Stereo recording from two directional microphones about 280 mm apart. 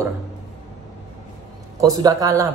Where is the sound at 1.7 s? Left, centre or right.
Centre.